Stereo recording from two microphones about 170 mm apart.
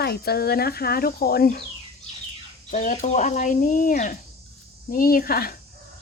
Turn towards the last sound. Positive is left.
turn(degrees=60)  # may be behind; listen again after turning